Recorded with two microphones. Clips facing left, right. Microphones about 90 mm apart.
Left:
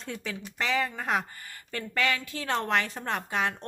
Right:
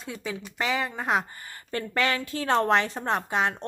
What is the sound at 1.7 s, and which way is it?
A woman's voice, 35° right (ahead or behind).